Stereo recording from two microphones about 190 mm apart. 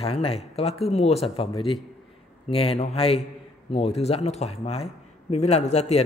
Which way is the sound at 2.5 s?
30° left (ahead or behind).